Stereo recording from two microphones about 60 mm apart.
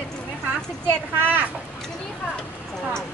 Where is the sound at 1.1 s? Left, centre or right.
Right.